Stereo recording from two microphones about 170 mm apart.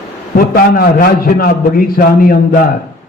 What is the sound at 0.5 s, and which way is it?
A man's voice, 60° left (ahead or behind).